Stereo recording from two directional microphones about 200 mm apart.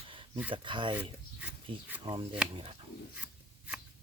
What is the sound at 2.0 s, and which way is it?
Speech, 25° right (ahead or behind).